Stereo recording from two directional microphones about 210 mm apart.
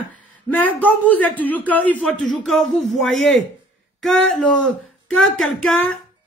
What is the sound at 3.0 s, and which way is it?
Speech, 65° left (ahead or behind).